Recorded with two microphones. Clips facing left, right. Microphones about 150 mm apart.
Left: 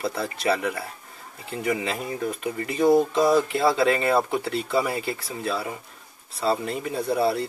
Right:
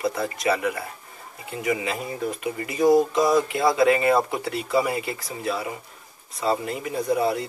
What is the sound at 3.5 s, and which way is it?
Speech, 30° left (ahead or behind).